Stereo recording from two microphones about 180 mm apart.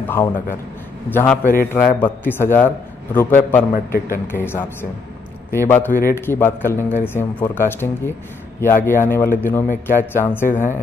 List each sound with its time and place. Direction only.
0.0 s a man's voice: 10° left (ahead or behind)
3.7 s a man's voice: 55° left (ahead or behind)
4.3 s a man's voice: 10° left (ahead or behind)